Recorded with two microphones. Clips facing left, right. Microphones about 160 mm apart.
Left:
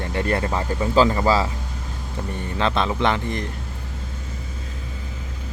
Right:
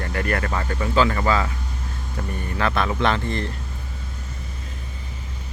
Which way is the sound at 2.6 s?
20° left (ahead or behind).